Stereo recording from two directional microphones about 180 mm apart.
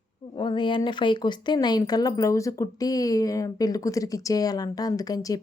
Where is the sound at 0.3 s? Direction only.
25° left (ahead or behind).